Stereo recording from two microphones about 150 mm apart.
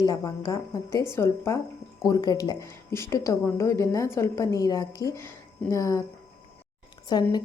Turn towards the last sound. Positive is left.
turn(degrees=30)  # may be behind; listen again after turning